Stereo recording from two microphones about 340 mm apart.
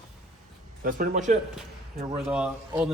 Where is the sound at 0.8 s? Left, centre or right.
Right.